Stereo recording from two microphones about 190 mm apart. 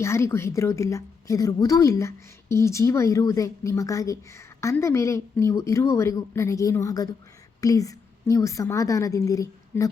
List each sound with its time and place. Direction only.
0.0 s a woman's voice: 15° left (ahead or behind)